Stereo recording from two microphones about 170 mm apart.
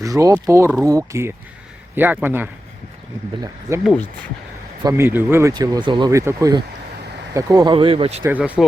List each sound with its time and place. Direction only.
0.0 s a man's voice: 20° right (ahead or behind)
3.8 s speech: 5° left (ahead or behind)
4.8 s speech: 20° right (ahead or behind); by 8.2 s 35° right (ahead or behind)
8.2 s a man's voice: 10° right (ahead or behind)